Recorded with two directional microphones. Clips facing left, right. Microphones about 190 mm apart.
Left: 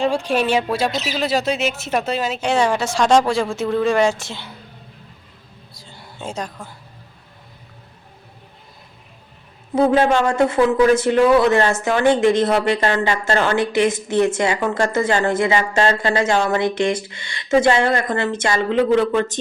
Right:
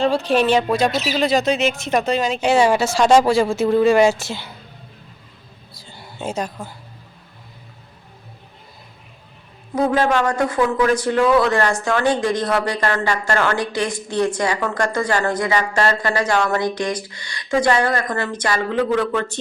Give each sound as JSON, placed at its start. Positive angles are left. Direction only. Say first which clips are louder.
{"t": 0.0, "sound": "speech", "louder": "right 2 dB", "side_deg": 10}
{"t": 2.4, "sound": "speech", "louder": "right 3 dB", "side_deg": -5}
{"t": 5.7, "sound": "a sound", "louder": "right 3 dB", "side_deg": 0}
{"t": 9.9, "sound": "speech", "louder": "left 2 dB", "side_deg": 20}